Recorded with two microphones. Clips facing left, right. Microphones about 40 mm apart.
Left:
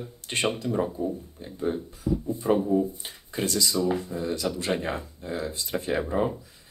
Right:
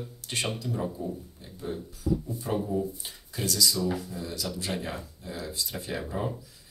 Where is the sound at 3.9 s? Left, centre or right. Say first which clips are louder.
Left 6 dB; left.